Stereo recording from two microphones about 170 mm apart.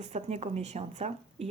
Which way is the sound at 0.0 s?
40° right (ahead or behind).